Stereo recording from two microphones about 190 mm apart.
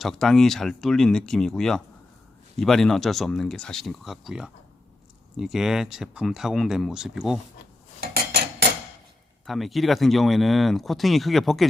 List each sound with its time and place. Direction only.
0.0 s speech: centre (ahead or behind)
8.0 s cutlery: 55° right (ahead or behind)
9.5 s speech: centre (ahead or behind)